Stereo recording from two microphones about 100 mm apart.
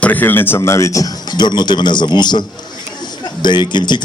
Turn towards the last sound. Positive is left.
turn(degrees=50)  # may be behind; listen again after turning